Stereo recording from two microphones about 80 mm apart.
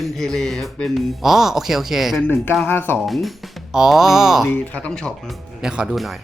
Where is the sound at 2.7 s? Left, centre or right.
Left.